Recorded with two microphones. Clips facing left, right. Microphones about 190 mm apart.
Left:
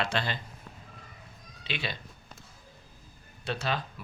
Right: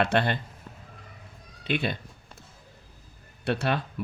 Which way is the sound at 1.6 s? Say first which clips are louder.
Right 8 dB; 55° right (ahead or behind).